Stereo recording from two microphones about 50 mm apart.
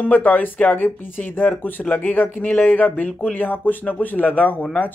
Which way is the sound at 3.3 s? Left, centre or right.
Left.